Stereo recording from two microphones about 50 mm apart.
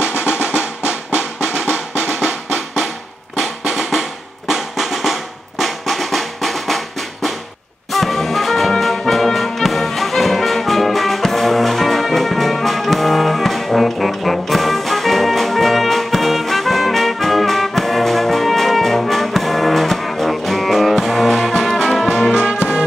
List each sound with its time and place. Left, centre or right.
0.5 s drum: centre
3.3 s drum: centre
7.9 s music: centre